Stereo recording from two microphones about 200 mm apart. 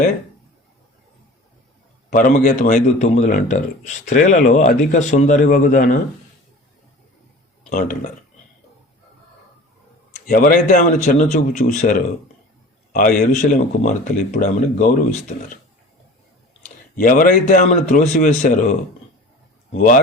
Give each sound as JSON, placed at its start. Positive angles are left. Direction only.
{"t": 2.1, "sound": "speech", "side_deg": 45}
{"t": 7.7, "sound": "speech", "side_deg": 40}
{"t": 10.2, "sound": "speech", "side_deg": 45}
{"t": 17.0, "sound": "speech", "side_deg": 45}